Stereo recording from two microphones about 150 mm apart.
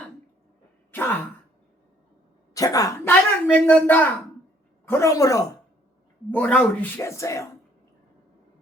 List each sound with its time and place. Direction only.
2.6 s speech: 25° left (ahead or behind)
6.3 s speech: 10° left (ahead or behind)